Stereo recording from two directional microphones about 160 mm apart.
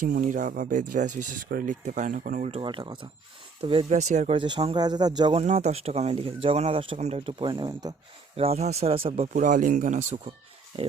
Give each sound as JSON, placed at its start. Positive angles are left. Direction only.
{"t": 0.0, "sound": "speech", "side_deg": -55}
{"t": 2.5, "sound": "speech", "side_deg": -35}
{"t": 4.4, "sound": "speech", "side_deg": -30}
{"t": 5.4, "sound": "speech", "side_deg": -45}
{"t": 8.4, "sound": "speech", "side_deg": -40}
{"t": 10.7, "sound": "speech", "side_deg": -30}